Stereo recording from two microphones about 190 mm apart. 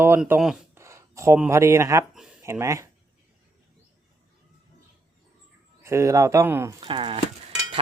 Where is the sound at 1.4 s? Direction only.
15° right (ahead or behind).